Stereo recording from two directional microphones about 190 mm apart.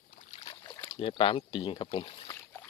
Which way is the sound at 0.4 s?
20° left (ahead or behind).